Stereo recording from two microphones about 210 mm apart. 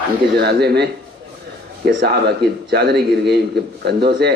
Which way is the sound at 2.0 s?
50° right (ahead or behind).